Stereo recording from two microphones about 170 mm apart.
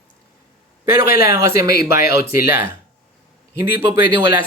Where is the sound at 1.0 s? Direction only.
65° left (ahead or behind).